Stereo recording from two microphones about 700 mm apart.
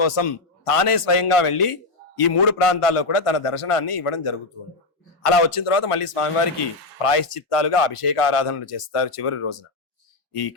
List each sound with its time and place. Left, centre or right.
0.0 s a man's voice: left